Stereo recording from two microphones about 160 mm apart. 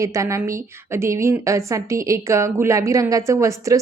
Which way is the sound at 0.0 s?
20° right (ahead or behind).